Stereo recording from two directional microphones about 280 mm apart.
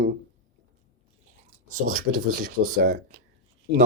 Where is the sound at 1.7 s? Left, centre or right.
Right.